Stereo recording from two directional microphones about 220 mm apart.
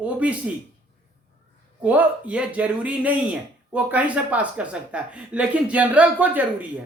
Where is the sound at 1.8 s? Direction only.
5° right (ahead or behind).